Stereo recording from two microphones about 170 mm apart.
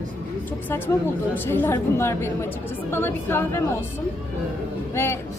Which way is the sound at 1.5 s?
15° left (ahead or behind).